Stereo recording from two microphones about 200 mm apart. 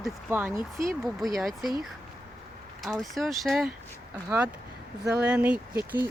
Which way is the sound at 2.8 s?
Centre (ahead or behind).